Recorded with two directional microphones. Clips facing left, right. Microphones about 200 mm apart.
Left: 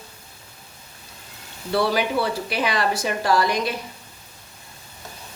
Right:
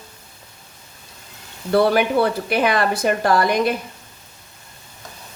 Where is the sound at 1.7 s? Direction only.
55° right (ahead or behind).